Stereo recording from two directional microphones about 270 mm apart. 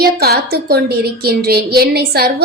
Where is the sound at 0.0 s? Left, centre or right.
Right.